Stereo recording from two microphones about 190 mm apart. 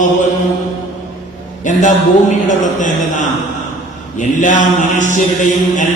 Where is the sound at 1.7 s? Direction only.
40° left (ahead or behind).